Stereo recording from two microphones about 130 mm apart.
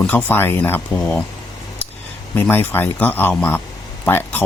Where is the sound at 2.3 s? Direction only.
15° left (ahead or behind).